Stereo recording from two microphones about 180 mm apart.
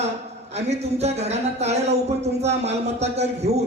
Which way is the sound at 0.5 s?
35° right (ahead or behind).